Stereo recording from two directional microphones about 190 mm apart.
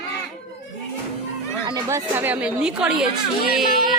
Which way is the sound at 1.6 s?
15° right (ahead or behind).